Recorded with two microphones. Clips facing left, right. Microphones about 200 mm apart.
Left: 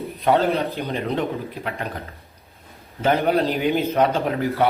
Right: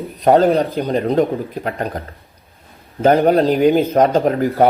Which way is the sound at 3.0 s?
45° right (ahead or behind).